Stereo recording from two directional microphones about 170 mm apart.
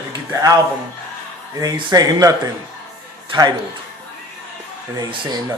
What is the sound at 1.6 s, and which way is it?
Speech, 20° right (ahead or behind).